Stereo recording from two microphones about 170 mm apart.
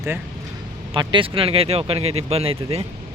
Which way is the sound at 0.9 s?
30° right (ahead or behind).